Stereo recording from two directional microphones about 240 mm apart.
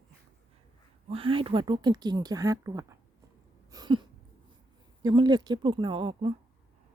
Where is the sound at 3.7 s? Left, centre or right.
Centre.